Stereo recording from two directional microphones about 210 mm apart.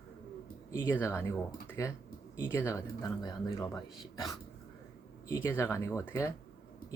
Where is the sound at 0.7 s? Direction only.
10° left (ahead or behind).